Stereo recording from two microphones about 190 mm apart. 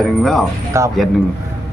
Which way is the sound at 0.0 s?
Centre (ahead or behind).